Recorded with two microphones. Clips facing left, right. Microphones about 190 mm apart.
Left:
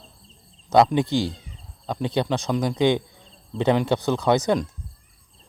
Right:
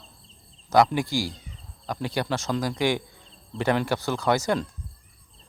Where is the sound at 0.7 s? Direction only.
20° left (ahead or behind).